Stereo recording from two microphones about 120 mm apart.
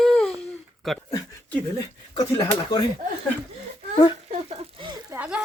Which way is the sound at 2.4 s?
40° left (ahead or behind).